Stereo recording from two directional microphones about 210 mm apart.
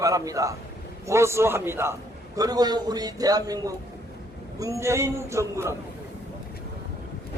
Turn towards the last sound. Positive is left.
turn(degrees=-15)  # may be behind; listen again after turning